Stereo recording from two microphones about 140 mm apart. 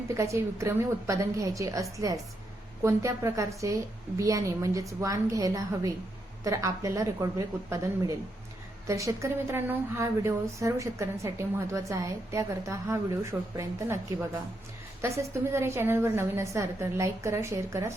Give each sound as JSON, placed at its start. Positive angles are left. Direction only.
{"t": 0.1, "sound": "speech", "side_deg": -20}